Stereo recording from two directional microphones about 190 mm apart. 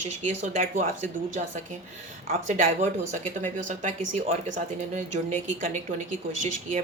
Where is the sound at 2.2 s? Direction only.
40° right (ahead or behind).